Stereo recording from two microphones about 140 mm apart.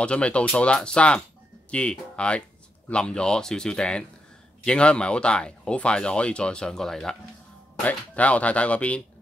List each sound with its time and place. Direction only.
0.0 s speech: 10° left (ahead or behind)